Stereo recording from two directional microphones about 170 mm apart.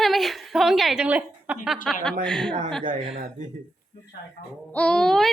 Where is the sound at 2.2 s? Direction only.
5° left (ahead or behind).